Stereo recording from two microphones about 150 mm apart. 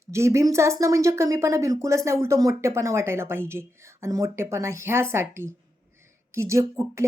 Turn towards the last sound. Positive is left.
turn(degrees=-20)  # may be behind; listen again after turning